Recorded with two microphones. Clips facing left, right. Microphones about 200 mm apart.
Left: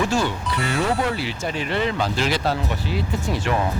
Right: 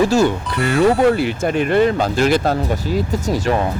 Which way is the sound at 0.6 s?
55° right (ahead or behind).